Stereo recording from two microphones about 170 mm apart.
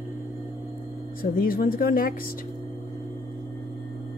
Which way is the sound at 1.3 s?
60° left (ahead or behind).